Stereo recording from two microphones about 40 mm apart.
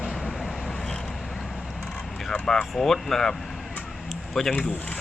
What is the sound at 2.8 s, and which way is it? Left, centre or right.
Speech, centre.